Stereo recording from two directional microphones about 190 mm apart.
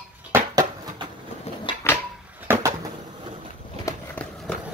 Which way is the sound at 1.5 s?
30° left (ahead or behind).